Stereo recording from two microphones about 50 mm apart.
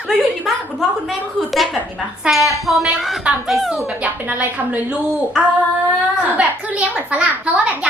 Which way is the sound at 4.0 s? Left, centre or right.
Right.